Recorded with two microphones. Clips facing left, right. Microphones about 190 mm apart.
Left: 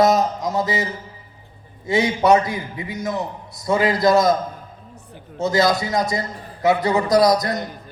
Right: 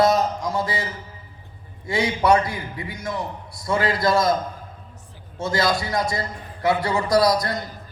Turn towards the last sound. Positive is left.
turn(degrees=20)  # may be behind; listen again after turning